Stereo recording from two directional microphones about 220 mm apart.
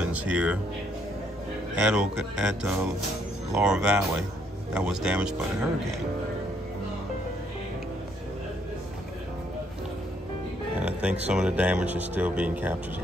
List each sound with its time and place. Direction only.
0.0 s speech: 5° right (ahead or behind)
1.8 s speech: 5° right (ahead or behind)
10.8 s music: 5° right (ahead or behind)
11.2 s speech: 5° right (ahead or behind)